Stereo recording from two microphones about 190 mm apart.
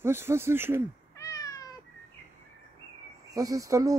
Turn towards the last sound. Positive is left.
turn(degrees=-15)  # may be behind; listen again after turning